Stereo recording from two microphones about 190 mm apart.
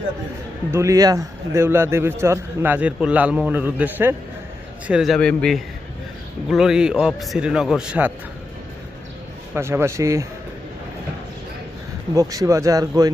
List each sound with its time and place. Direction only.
0.7 s a man's voice: 15° right (ahead or behind)
9.6 s a man's voice: 15° right (ahead or behind)
12.1 s a man's voice: 15° right (ahead or behind)